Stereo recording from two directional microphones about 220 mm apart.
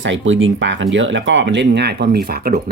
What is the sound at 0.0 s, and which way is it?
Speech, 60° right (ahead or behind).